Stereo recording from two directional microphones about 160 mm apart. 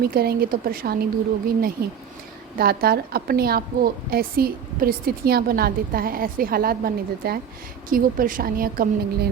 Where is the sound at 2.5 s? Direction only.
70° right (ahead or behind).